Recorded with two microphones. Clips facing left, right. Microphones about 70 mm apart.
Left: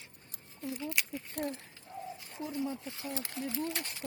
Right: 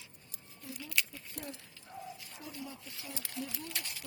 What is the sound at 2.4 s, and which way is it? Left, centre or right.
Speech, left.